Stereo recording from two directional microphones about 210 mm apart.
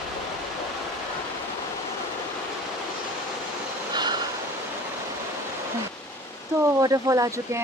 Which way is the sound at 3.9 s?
20° right (ahead or behind).